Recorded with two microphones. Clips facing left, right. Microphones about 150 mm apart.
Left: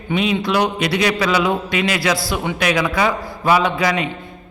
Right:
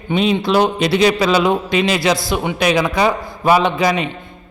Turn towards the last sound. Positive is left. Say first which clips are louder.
# right 2 dB
turn(degrees=-20)  # may be behind; listen again after turning